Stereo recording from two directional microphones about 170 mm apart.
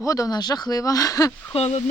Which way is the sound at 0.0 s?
20° left (ahead or behind).